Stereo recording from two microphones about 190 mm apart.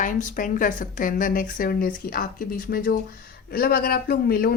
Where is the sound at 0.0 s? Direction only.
45° left (ahead or behind).